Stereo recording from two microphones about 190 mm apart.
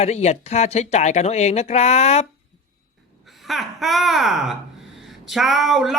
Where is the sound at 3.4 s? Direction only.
Centre (ahead or behind).